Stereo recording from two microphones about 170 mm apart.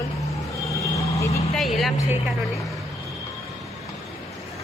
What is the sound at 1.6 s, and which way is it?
Speech, centre (ahead or behind).